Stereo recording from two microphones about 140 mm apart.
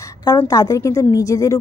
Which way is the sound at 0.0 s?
25° left (ahead or behind).